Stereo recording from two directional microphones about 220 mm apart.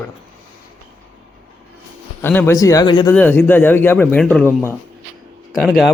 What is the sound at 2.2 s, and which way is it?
Speech, 10° left (ahead or behind).